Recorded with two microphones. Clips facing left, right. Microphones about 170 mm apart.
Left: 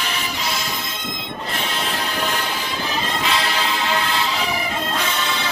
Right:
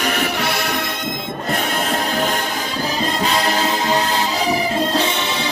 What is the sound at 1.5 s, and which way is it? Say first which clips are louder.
Music: right 6 dB; 45° right (ahead or behind).